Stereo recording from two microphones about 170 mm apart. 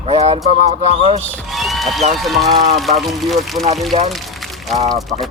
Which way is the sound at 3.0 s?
Centre (ahead or behind).